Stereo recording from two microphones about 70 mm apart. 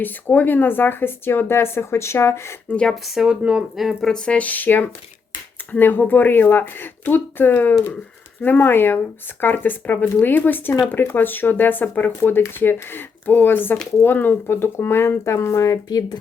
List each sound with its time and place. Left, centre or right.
0.0 s speech: left
2.6 s speech: centre
2.9 s speech: centre
4.1 s speech: centre; by 16.1 s left